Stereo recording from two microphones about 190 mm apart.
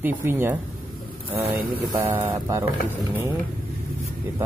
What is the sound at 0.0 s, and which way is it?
Speech, 10° right (ahead or behind).